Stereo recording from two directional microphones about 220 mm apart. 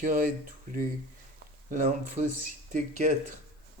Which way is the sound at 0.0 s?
40° right (ahead or behind).